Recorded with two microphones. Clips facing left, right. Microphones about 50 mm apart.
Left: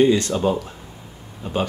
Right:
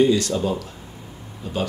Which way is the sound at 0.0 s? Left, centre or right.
Left.